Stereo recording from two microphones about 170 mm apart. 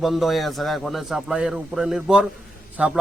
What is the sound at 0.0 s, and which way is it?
A man's voice, centre (ahead or behind).